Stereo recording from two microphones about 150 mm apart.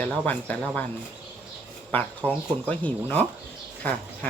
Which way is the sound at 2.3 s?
10° left (ahead or behind).